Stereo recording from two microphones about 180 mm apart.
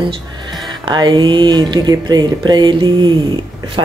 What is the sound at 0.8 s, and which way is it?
Speech, 25° right (ahead or behind).